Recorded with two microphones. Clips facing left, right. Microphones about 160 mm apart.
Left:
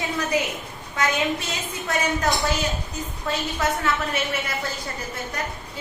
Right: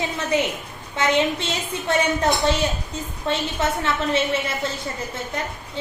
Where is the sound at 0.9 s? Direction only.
25° right (ahead or behind).